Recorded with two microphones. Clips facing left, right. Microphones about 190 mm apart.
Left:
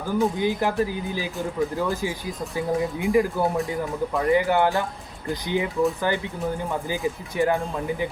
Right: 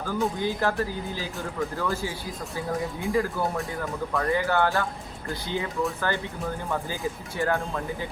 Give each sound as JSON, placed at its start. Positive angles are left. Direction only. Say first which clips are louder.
{"t": 0.0, "sound": "speech", "louder": "left 4 dB", "side_deg": 15}